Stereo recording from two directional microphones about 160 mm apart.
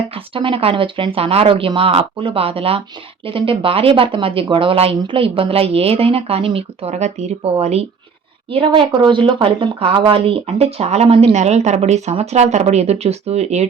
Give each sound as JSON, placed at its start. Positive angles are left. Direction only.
{"t": 0.1, "sound": "speech", "side_deg": -35}